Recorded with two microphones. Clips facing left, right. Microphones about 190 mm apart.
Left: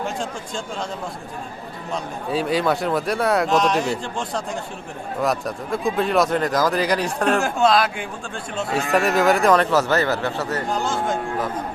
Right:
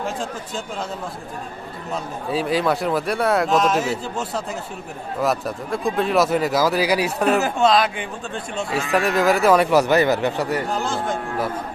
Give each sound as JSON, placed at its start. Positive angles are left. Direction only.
{"t": 0.0, "sound": "speech", "side_deg": 0}
{"t": 1.9, "sound": "speech", "side_deg": 0}
{"t": 10.7, "sound": "speech", "side_deg": 0}